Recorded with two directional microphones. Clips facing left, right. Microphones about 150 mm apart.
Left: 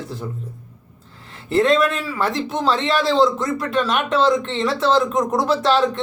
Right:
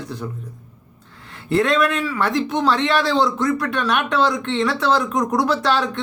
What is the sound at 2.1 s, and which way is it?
Speech, 30° left (ahead or behind).